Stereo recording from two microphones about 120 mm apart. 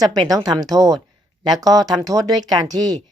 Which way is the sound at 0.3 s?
30° right (ahead or behind).